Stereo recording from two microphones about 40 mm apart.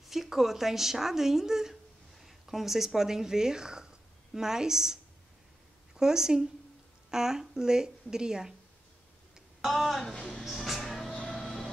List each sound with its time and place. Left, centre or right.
0.1 s a woman's voice: centre
5.9 s a woman's voice: centre
9.6 s a sound: centre
10.2 s music: centre